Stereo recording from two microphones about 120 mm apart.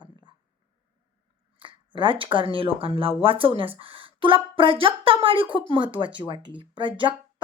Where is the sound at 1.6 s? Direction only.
45° right (ahead or behind).